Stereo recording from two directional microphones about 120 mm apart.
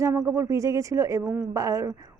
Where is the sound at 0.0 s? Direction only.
25° right (ahead or behind).